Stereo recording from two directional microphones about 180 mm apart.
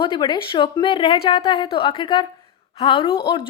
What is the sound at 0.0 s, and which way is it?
A woman's voice, 25° left (ahead or behind).